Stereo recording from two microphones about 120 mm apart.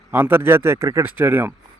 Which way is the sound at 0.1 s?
20° right (ahead or behind).